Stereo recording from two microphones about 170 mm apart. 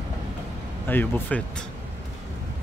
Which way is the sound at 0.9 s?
10° left (ahead or behind).